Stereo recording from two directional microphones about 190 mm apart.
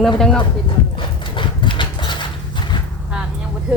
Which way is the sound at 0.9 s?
25° left (ahead or behind).